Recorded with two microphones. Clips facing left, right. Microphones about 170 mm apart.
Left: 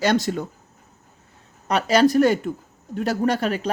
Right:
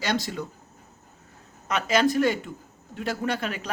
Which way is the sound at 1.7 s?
35° left (ahead or behind).